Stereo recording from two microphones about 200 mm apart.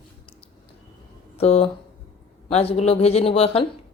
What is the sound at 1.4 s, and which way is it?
Speech, 30° left (ahead or behind).